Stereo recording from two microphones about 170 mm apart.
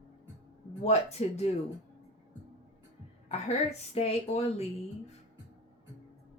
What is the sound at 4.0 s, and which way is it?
Speech, 35° left (ahead or behind).